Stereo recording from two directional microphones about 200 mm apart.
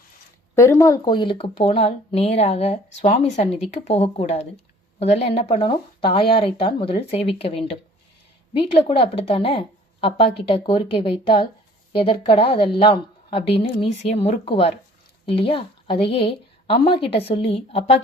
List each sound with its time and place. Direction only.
0.5 s a woman's voice: 15° left (ahead or behind); by 18.0 s 30° left (ahead or behind)